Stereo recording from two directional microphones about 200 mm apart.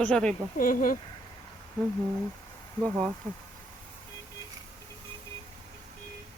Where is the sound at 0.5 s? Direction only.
40° left (ahead or behind).